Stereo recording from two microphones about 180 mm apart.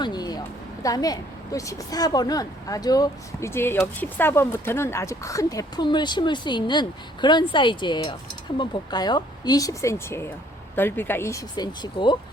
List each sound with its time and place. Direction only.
0.0 s a woman's voice: 25° left (ahead or behind)